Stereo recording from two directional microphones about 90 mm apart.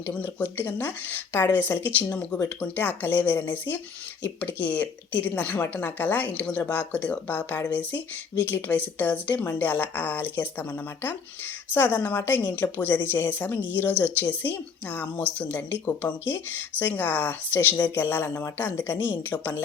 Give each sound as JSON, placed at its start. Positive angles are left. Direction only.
{"t": 0.1, "sound": "speech", "side_deg": 15}